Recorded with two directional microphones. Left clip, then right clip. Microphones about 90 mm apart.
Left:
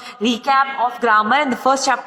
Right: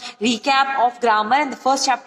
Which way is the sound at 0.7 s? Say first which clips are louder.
Right 2 dB; 40° left (ahead or behind).